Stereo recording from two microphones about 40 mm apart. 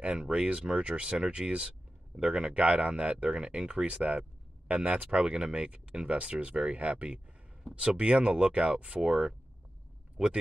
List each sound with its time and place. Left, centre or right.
0.3 s speech: right
5.1 s speech: centre